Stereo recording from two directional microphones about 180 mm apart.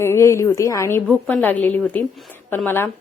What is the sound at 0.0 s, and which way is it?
Speech, 15° left (ahead or behind).